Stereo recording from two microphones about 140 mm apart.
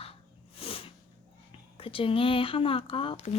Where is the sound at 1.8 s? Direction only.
40° left (ahead or behind).